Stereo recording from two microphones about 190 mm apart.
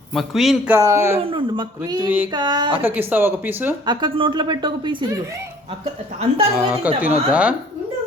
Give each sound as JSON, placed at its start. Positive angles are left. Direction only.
{"t": 0.1, "sound": "speech", "side_deg": 0}
{"t": 0.8, "sound": "speech", "side_deg": -15}
{"t": 1.2, "sound": "a woman's voice", "side_deg": -25}
{"t": 2.3, "sound": "a woman's voice", "side_deg": -20}
{"t": 2.8, "sound": "speech", "side_deg": -10}
{"t": 3.8, "sound": "a woman's voice", "side_deg": -25}
{"t": 6.6, "sound": "speech", "side_deg": -5}